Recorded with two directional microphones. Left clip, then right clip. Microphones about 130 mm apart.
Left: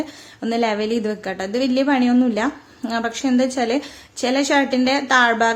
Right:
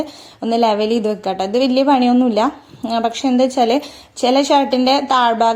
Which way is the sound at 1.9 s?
20° right (ahead or behind).